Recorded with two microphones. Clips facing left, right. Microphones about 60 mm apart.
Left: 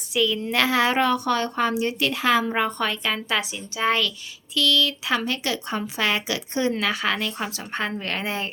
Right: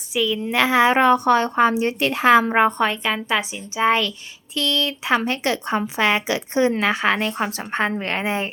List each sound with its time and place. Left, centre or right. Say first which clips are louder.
0.1 s a woman's voice: right 1 dB; centre
4.5 s a woman's voice: left 1 dB; right